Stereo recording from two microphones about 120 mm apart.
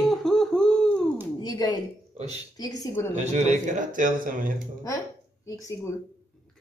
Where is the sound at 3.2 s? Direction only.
85° right.